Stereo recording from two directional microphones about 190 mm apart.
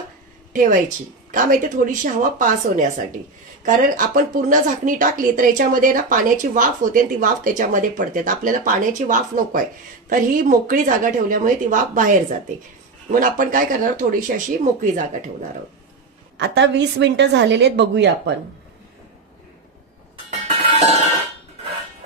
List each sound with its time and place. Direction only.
0.5 s a woman's voice: 45° right (ahead or behind)
16.3 s a woman's voice: 65° right (ahead or behind)